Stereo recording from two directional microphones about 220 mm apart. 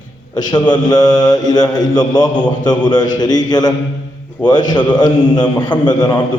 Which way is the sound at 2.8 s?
20° left (ahead or behind).